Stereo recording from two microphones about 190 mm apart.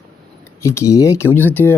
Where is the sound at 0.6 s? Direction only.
15° left (ahead or behind).